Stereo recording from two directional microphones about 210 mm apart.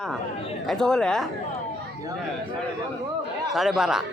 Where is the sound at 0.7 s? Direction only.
5° left (ahead or behind).